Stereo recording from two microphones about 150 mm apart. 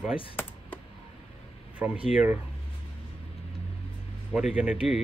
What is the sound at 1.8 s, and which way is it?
Speech, 10° right (ahead or behind).